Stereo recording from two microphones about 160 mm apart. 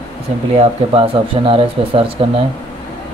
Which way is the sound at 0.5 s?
40° right (ahead or behind).